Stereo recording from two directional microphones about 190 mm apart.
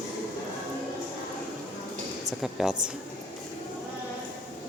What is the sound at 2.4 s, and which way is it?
Speech, centre (ahead or behind).